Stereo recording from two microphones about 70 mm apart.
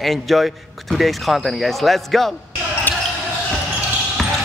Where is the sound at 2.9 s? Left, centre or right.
Left.